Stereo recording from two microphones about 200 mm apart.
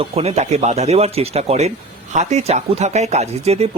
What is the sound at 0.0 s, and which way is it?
Speech, 30° right (ahead or behind).